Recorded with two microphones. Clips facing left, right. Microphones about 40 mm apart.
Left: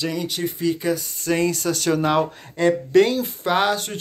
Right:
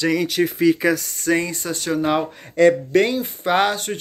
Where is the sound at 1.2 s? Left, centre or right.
Right.